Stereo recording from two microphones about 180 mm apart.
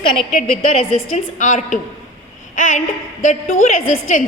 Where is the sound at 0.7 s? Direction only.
35° left (ahead or behind).